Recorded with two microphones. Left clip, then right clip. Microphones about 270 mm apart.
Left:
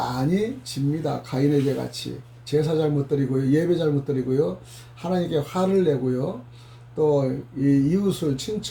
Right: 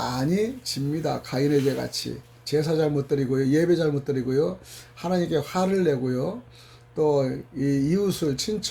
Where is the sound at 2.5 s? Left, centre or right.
Right.